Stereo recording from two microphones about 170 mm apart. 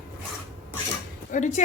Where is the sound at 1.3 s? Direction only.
45° left (ahead or behind).